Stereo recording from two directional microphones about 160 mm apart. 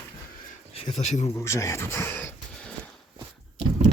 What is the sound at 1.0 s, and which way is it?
Speech, 45° left (ahead or behind).